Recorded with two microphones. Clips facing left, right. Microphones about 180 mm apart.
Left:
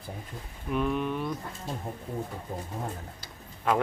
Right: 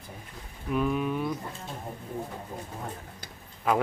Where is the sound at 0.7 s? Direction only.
Centre (ahead or behind).